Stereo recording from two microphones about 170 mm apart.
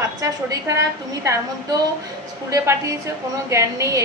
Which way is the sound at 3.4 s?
15° right (ahead or behind).